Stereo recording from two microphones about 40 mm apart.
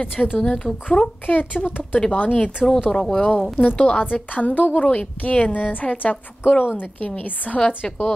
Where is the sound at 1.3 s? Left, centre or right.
Left.